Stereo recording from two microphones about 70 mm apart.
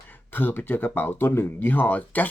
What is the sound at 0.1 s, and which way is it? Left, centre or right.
Speech, left.